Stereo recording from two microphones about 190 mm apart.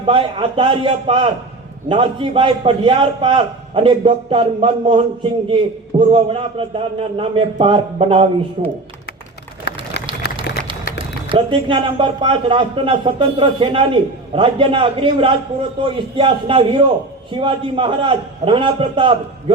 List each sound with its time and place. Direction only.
0.0 s speech: 25° right (ahead or behind)
9.7 s a sound: 60° left (ahead or behind)
10.9 s speech: 25° right (ahead or behind)